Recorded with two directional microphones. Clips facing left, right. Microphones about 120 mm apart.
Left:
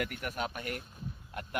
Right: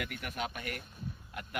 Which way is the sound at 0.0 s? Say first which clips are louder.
Left 3 dB; 40° left (ahead or behind).